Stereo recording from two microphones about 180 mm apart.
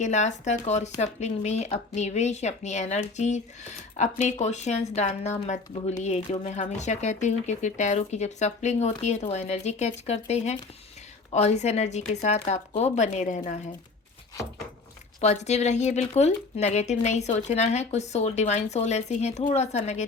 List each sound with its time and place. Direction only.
0.0 s speech: 40° left (ahead or behind)
15.2 s speech: 40° left (ahead or behind)